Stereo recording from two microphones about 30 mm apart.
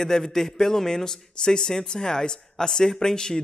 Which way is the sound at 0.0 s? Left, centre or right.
Centre.